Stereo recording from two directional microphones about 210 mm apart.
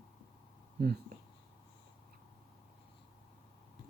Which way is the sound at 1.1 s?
45° right (ahead or behind).